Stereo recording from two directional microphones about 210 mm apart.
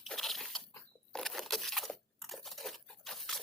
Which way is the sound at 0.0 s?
Centre (ahead or behind).